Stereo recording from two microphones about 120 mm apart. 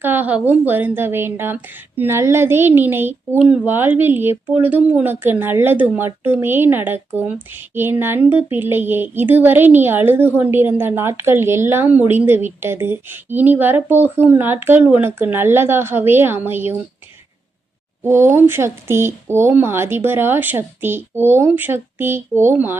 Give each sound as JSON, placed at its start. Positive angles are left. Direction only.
{"t": 0.0, "sound": "speech", "side_deg": -15}
{"t": 18.0, "sound": "speech", "side_deg": -20}